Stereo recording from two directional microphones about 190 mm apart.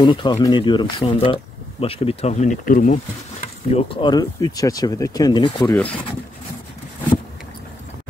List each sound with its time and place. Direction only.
0.0 s speech: 20° left (ahead or behind)